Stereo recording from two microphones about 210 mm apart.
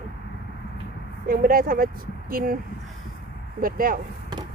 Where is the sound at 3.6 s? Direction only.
40° right (ahead or behind).